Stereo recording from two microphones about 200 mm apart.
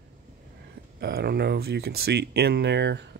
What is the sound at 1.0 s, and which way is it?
Speech, 55° right (ahead or behind).